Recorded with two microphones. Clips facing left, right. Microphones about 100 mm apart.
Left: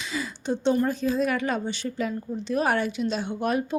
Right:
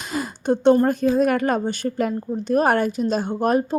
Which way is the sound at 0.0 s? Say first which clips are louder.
Right 5 dB; 50° right (ahead or behind).